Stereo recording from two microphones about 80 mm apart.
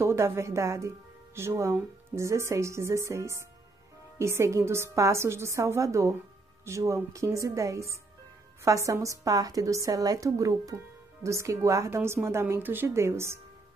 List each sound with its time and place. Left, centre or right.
0.0 s a woman's voice: right